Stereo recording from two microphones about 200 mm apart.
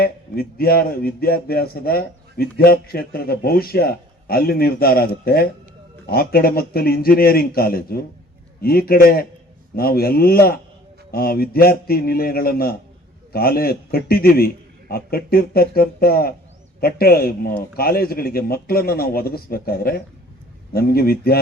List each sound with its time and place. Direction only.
0.0 s speech: 50° left (ahead or behind)